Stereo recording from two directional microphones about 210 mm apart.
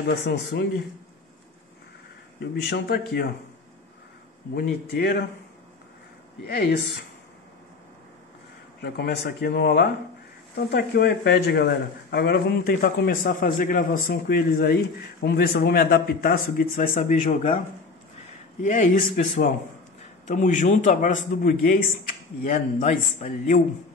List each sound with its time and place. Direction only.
0.0 s speech: 50° left (ahead or behind)
2.5 s speech: 50° left (ahead or behind)
4.6 s speech: 50° left (ahead or behind)
6.4 s speech: 50° left (ahead or behind)
8.8 s speech: 50° left (ahead or behind)
18.6 s a man's voice: 40° left (ahead or behind)